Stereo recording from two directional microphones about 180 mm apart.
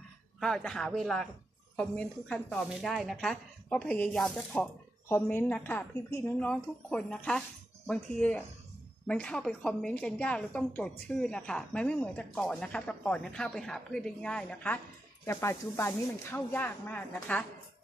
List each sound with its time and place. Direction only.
0.4 s a woman's voice: 5° left (ahead or behind)